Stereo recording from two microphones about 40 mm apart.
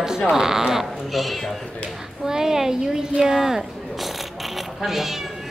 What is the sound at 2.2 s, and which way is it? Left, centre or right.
Speech, centre.